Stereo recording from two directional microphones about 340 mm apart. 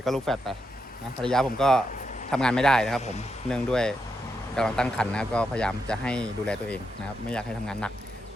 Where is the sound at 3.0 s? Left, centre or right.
Centre.